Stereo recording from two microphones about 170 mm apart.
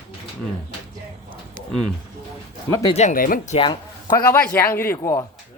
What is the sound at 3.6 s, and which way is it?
A man's voice, 25° left (ahead or behind).